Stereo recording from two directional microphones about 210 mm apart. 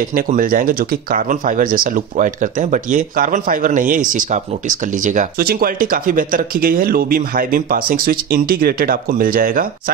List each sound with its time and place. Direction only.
0.1 s speech: 40° right (ahead or behind)